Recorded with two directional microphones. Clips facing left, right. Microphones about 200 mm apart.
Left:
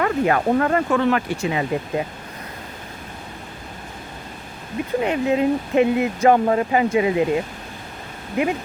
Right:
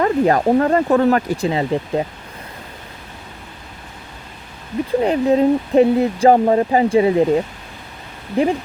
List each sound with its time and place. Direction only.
0.0 s speech: 35° right (ahead or behind)
5.0 s speech: 35° right (ahead or behind)